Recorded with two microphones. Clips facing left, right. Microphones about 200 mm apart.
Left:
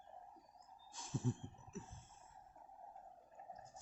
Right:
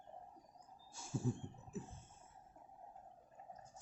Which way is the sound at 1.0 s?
10° right (ahead or behind).